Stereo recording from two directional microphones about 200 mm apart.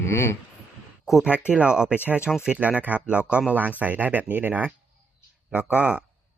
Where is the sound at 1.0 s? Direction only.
5° right (ahead or behind).